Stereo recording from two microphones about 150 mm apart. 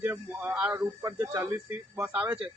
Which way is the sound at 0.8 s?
20° right (ahead or behind).